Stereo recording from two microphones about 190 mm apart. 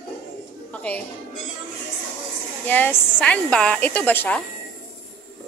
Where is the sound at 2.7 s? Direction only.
10° left (ahead or behind).